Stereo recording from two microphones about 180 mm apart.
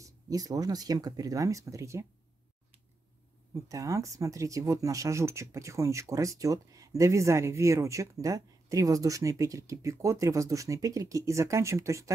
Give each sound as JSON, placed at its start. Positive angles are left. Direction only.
{"t": 0.0, "sound": "speech", "side_deg": -20}
{"t": 3.6, "sound": "speech", "side_deg": -20}